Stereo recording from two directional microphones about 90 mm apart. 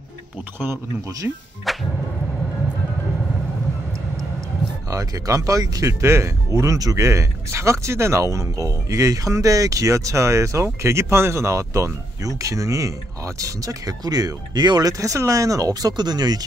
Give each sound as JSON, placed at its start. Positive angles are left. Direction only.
{"t": 1.2, "sound": "speech", "side_deg": -25}
{"t": 1.7, "sound": "music", "side_deg": 0}
{"t": 4.8, "sound": "speech", "side_deg": -40}